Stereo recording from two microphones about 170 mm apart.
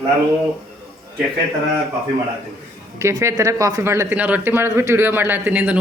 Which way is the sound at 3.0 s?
15° right (ahead or behind).